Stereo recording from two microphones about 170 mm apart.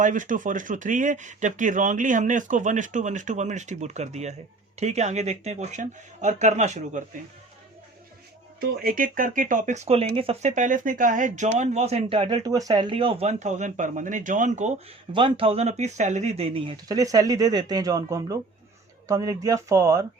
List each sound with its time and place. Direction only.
0.0 s speech: 50° right (ahead or behind)
8.7 s speech: 60° right (ahead or behind)
15.1 s speech: 30° right (ahead or behind)